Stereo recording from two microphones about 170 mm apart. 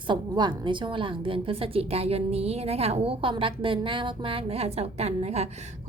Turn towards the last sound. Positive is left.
turn(degrees=-40)  # may be behind; listen again after turning